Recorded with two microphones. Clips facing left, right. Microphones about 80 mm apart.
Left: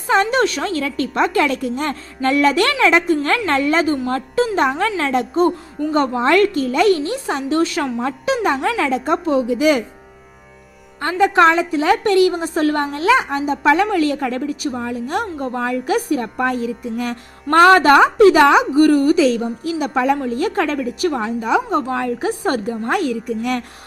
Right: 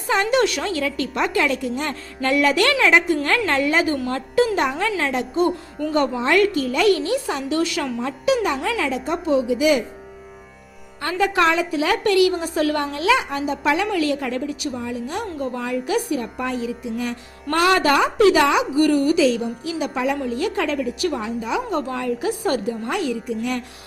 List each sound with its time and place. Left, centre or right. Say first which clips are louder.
0.1 s a woman's voice: left 3 dB; left
6.2 s a woman's voice: left 4 dB; left
6.5 s a woman's voice: left 3 dB; left
11.1 s a woman's voice: left 5 dB; left
21.7 s a woman's voice: left 4 dB; left